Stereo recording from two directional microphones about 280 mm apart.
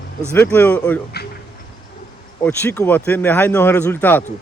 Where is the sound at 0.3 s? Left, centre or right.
Centre.